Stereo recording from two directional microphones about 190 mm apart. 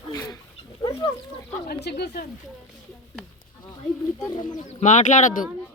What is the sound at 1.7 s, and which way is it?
Speech, 60° left (ahead or behind).